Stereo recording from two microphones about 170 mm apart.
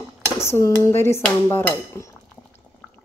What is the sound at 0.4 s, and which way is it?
Dishes, 15° left (ahead or behind).